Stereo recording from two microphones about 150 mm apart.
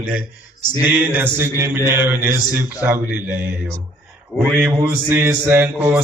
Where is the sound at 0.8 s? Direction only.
15° right (ahead or behind).